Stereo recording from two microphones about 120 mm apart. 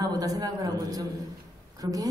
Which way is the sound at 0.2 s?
30° right (ahead or behind).